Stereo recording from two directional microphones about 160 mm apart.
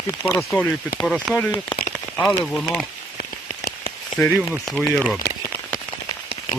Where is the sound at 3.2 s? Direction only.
70° left (ahead or behind).